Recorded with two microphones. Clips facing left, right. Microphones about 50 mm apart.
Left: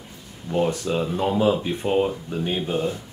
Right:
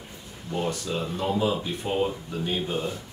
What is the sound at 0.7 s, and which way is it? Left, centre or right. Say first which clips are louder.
Speech: left 5 dB; left.